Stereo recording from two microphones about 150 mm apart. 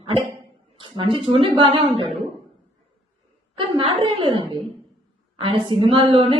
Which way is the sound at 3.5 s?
35° right (ahead or behind).